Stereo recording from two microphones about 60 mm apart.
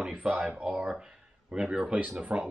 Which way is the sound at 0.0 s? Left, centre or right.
Centre.